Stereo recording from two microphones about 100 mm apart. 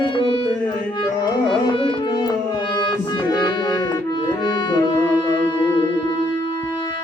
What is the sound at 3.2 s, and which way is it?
Music, 45° left (ahead or behind).